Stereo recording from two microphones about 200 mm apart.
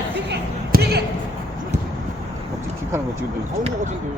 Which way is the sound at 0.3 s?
55° right (ahead or behind).